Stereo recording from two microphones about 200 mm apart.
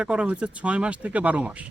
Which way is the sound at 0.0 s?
5° right (ahead or behind).